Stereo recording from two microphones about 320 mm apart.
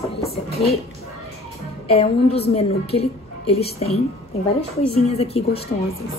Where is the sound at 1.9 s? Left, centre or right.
Centre.